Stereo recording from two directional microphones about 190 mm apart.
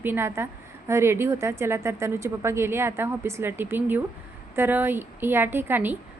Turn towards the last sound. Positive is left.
turn(degrees=-10)  # may be behind; listen again after turning